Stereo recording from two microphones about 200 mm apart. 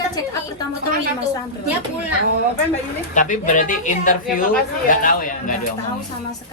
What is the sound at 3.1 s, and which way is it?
A woman's voice, 40° left (ahead or behind).